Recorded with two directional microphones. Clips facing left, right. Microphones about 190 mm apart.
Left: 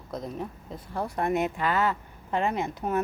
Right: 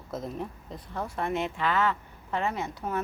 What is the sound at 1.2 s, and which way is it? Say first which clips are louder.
Speech: left 3 dB; 45° left (ahead or behind).